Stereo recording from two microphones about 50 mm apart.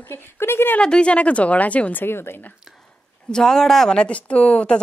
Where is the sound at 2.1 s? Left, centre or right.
Left.